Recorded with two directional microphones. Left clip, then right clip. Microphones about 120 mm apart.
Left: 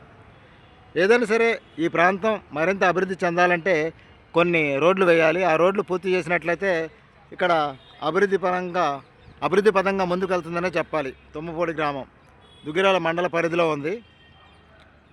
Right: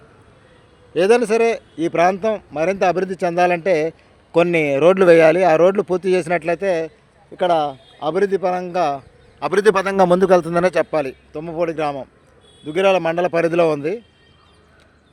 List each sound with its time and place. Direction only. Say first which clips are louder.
0.9 s speech: right 4 dB; 35° right (ahead or behind)
2.1 s a man's voice: right 3 dB; 10° right (ahead or behind); by 9.0 s 25° right (ahead or behind)
9.4 s a man's voice: right 3 dB; 45° right (ahead or behind)
9.6 s speech: right 10 dB; 75° right (ahead or behind)
10.9 s a man's voice: right 6 dB; 35° right (ahead or behind)